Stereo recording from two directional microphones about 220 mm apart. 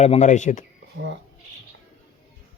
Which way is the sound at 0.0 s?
30° left (ahead or behind).